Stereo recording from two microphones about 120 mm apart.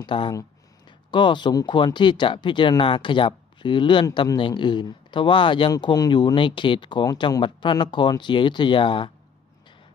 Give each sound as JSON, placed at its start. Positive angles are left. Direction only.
{"t": 0.0, "sound": "speech", "side_deg": 45}